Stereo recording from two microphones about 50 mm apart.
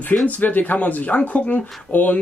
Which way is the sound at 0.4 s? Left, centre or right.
Left.